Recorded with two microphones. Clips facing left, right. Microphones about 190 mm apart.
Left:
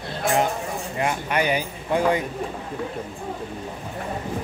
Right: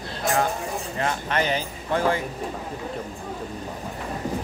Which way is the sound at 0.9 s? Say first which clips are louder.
Left 2 dB; 15° left (ahead or behind).